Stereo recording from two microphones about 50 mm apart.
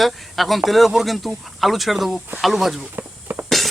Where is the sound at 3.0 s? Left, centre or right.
Right.